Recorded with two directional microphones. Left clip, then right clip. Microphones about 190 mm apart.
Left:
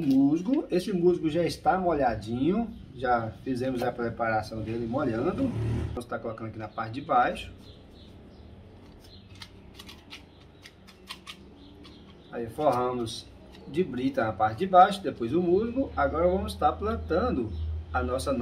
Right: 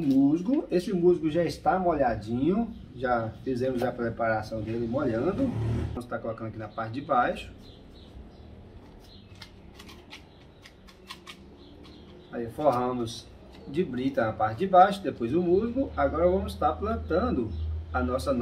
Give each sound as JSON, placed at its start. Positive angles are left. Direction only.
{"t": 0.0, "sound": "speech", "side_deg": 15}
{"t": 12.3, "sound": "speech", "side_deg": 15}